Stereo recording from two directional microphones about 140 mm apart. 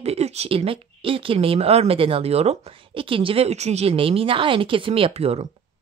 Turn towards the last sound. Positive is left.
turn(degrees=-45)  # may be behind; listen again after turning